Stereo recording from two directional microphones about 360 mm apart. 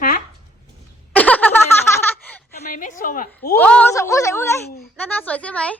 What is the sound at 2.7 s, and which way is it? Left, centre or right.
Speech, left.